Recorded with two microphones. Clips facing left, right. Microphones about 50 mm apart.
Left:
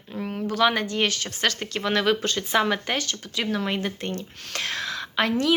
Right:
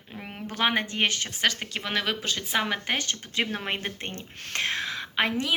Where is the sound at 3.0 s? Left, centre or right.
Right.